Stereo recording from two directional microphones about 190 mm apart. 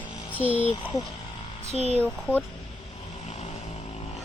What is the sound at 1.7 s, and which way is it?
Speech, 35° right (ahead or behind).